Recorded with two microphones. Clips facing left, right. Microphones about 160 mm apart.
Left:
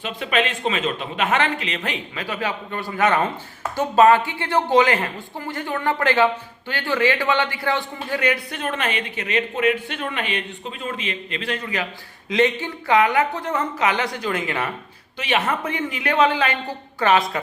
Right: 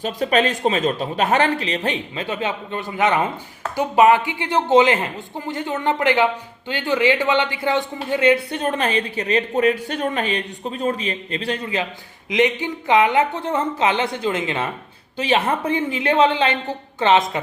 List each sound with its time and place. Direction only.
0.0 s a man's voice: 40° right (ahead or behind)
12.3 s speech: 15° right (ahead or behind)